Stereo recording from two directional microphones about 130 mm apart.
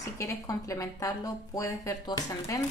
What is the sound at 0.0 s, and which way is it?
Speech, 25° left (ahead or behind).